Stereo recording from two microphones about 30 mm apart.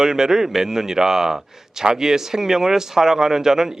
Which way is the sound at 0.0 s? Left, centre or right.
Centre.